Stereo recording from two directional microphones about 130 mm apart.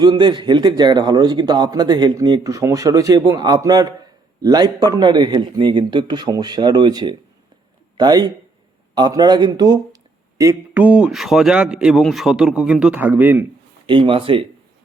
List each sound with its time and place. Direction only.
0.0 s a man's voice: 35° right (ahead or behind)
10.8 s speech: 10° right (ahead or behind)
13.8 s speech: 40° right (ahead or behind)